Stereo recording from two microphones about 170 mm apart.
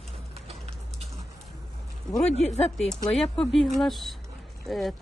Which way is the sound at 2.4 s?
40° left (ahead or behind).